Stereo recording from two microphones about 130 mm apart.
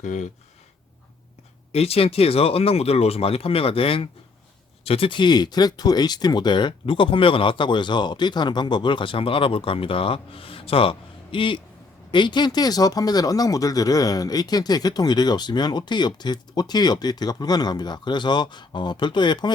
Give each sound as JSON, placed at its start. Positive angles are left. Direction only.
{"t": 0.0, "sound": "speech", "side_deg": 70}
{"t": 1.7, "sound": "speech", "side_deg": 50}